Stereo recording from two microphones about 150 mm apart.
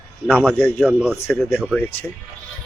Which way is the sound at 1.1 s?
15° left (ahead or behind).